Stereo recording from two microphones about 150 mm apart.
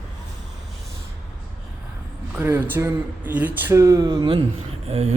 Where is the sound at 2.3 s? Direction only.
15° right (ahead or behind); by 4.4 s 30° right (ahead or behind).